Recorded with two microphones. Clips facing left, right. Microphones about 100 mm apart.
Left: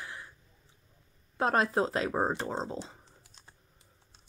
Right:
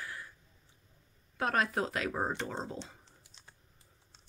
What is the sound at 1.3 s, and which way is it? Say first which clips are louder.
Speech: left 4 dB; 30° left (ahead or behind).